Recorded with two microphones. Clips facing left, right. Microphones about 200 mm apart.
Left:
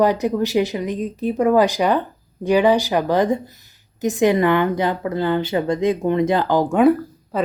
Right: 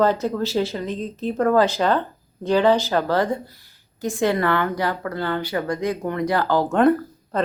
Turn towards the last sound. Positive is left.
turn(degrees=5)  # may be behind; listen again after turning